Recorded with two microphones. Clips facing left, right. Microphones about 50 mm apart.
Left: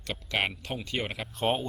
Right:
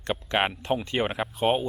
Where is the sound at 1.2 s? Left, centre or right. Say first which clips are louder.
Right 4 dB; centre.